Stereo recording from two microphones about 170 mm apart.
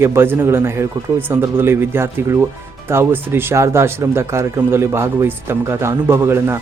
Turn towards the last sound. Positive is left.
turn(degrees=-15)  # may be behind; listen again after turning